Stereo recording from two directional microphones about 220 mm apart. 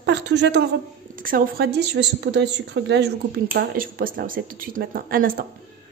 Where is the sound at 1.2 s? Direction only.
40° right (ahead or behind).